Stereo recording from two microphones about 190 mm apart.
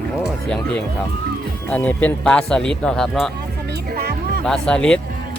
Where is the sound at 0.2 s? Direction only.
5° left (ahead or behind).